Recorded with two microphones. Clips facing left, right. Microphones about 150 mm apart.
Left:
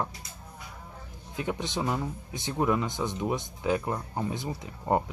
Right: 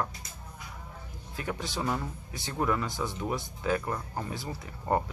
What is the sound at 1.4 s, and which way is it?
Speech, 20° left (ahead or behind).